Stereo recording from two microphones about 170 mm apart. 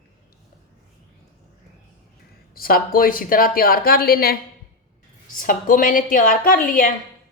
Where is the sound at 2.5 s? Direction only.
60° left (ahead or behind).